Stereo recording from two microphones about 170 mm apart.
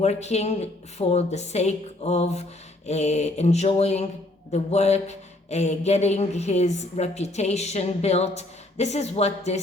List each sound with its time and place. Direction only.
0.0 s speech: 40° left (ahead or behind)